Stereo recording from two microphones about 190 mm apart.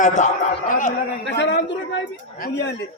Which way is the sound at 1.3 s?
65° left (ahead or behind).